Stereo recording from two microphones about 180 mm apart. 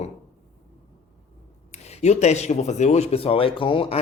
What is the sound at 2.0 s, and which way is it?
Speech, 40° left (ahead or behind).